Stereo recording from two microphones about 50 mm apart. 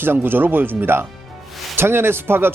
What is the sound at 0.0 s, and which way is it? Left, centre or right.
Speech, right.